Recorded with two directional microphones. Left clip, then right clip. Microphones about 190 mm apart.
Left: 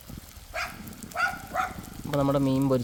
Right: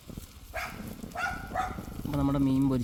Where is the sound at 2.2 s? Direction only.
35° left (ahead or behind).